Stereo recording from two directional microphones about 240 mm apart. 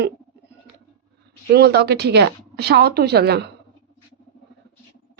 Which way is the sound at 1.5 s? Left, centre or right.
Right.